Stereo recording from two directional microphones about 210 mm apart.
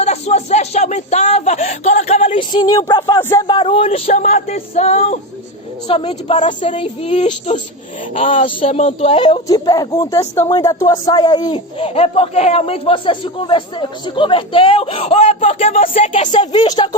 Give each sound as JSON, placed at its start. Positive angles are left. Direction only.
{"t": 0.0, "sound": "speech", "side_deg": 30}
{"t": 3.4, "sound": "speech", "side_deg": 25}
{"t": 16.3, "sound": "speech", "side_deg": 20}